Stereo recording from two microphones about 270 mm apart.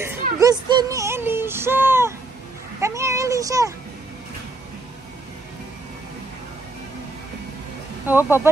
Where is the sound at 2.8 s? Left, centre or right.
Centre.